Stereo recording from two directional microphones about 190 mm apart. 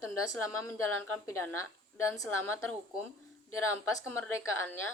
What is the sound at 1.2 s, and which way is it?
A woman's voice, 15° left (ahead or behind).